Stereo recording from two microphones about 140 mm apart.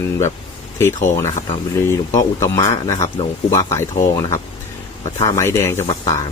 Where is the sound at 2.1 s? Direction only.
25° left (ahead or behind).